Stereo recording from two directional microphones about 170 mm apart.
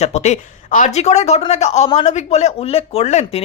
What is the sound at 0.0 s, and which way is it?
Speech, 40° left (ahead or behind).